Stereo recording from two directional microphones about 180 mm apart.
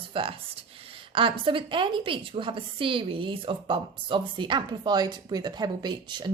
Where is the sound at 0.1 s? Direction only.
30° right (ahead or behind).